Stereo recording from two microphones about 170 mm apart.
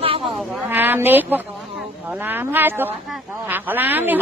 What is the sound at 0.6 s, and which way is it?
A man's voice, 10° right (ahead or behind).